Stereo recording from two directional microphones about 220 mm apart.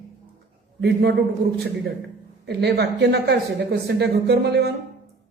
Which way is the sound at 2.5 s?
45° right (ahead or behind).